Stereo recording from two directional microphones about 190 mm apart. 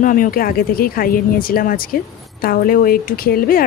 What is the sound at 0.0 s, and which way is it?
Speech, 45° left (ahead or behind).